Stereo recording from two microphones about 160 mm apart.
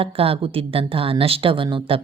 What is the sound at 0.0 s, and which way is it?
Speech, 35° right (ahead or behind).